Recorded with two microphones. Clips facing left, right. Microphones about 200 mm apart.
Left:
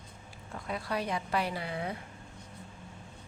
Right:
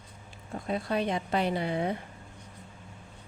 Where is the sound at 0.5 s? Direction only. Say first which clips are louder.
Right 5 dB; 25° right (ahead or behind).